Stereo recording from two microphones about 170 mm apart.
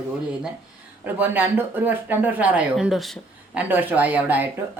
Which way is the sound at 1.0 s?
10° right (ahead or behind).